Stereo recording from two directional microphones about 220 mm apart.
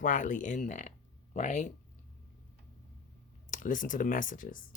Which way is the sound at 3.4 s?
35° left (ahead or behind).